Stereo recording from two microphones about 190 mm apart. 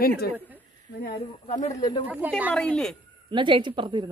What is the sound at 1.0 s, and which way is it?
Speech, 40° left (ahead or behind).